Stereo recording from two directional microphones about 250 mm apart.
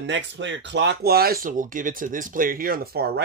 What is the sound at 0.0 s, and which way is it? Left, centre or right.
Speech, right.